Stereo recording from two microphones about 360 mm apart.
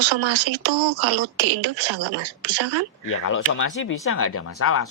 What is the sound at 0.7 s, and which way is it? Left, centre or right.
A woman's voice, right.